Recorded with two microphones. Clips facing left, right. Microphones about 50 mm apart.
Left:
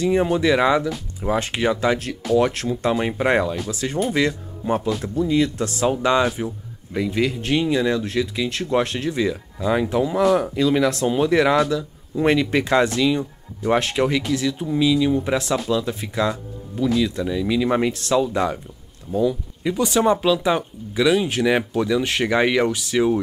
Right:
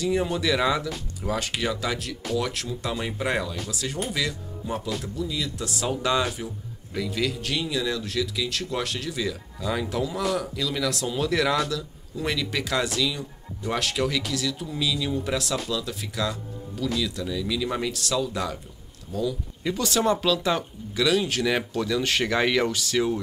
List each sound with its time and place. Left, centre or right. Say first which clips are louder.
0.0 s speech: left 6 dB; left
5.9 s speech: left 6 dB; left
19.6 s speech: left 5 dB; centre